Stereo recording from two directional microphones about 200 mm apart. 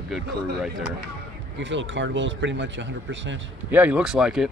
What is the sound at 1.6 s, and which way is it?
Speech, 65° right (ahead or behind).